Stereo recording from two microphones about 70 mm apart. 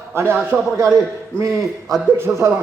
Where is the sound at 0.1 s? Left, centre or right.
Right.